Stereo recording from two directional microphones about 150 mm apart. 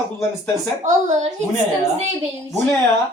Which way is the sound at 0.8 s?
55° right (ahead or behind).